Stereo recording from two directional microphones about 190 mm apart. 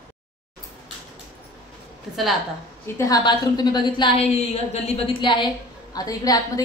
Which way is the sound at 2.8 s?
15° left (ahead or behind).